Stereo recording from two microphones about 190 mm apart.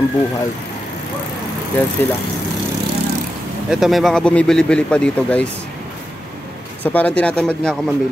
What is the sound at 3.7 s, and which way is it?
Speech, centre (ahead or behind).